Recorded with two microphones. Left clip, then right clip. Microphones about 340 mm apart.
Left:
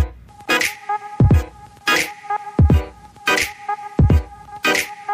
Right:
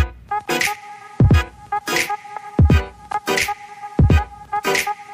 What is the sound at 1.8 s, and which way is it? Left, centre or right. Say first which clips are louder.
Vehicle horn: left 5 dB; centre.